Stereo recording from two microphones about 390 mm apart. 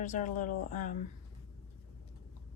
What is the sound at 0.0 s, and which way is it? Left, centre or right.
Speech, centre.